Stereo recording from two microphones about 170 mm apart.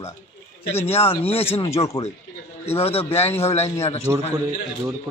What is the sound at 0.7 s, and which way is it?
Speech, 15° left (ahead or behind).